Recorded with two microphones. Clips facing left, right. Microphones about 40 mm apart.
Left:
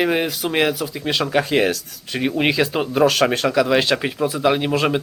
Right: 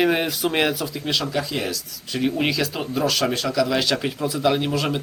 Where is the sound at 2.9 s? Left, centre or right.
Left.